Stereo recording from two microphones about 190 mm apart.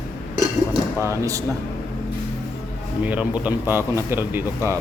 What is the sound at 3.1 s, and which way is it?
A man's voice, 5° right (ahead or behind).